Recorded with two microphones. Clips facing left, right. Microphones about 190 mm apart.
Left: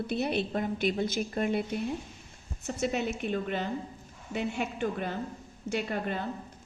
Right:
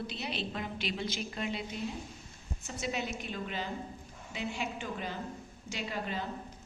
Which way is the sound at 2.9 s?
55° left (ahead or behind).